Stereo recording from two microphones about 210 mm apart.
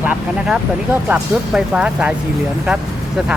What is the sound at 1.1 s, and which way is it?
Speech, 5° right (ahead or behind).